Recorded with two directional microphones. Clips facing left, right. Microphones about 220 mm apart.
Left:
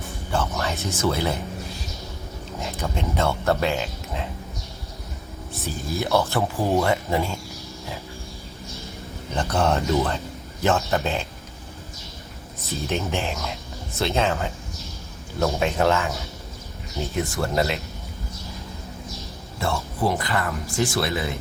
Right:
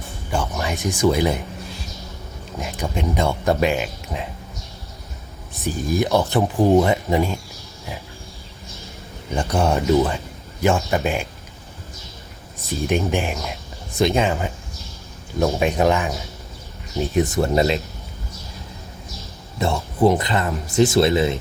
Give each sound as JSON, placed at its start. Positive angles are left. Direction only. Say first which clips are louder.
{"t": 0.3, "sound": "a sound", "louder": "right 2 dB", "side_deg": -15}
{"t": 2.6, "sound": "speech", "louder": "right 3 dB", "side_deg": -15}
{"t": 5.6, "sound": "speech", "louder": "right 6 dB", "side_deg": -15}
{"t": 9.3, "sound": "speech", "louder": "right 2 dB", "side_deg": -10}
{"t": 12.9, "sound": "speech", "louder": "right 5 dB", "side_deg": -15}
{"t": 19.5, "sound": "speech", "louder": "right 5 dB", "side_deg": -20}